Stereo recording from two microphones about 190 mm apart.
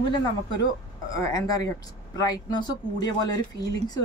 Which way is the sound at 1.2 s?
20° left (ahead or behind).